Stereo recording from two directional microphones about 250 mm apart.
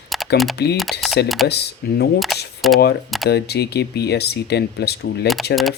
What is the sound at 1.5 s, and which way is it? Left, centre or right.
Speech, left.